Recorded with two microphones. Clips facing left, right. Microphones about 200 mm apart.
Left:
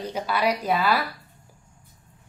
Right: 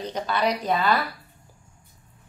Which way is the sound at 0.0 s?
10° left (ahead or behind).